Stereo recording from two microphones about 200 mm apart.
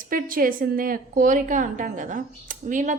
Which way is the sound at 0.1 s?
45° right (ahead or behind).